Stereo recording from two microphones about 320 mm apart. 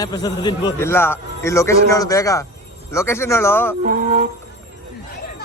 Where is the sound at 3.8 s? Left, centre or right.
Right.